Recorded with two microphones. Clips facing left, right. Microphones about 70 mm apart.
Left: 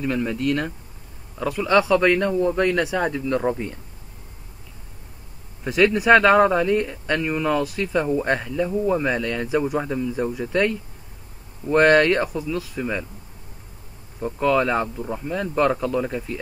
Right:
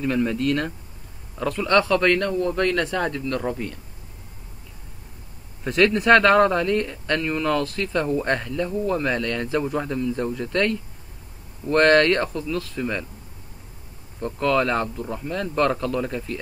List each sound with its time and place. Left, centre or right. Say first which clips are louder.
0.0 s speech: right 1 dB; centre
5.6 s speech: left 1 dB; centre
14.2 s speech: left 1 dB; centre